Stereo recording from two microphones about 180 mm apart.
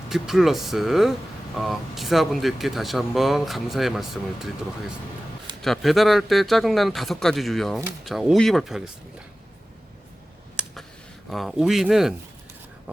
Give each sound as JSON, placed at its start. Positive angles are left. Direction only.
{"t": 0.1, "sound": "speech", "side_deg": 0}
{"t": 5.6, "sound": "speech", "side_deg": 0}
{"t": 10.6, "sound": "a sound", "side_deg": -5}
{"t": 11.3, "sound": "speech", "side_deg": 0}